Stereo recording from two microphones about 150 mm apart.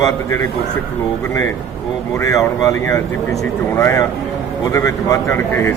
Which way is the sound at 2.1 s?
20° left (ahead or behind).